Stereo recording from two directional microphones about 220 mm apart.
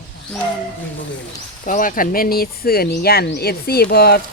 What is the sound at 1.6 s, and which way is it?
Speech, 35° left (ahead or behind).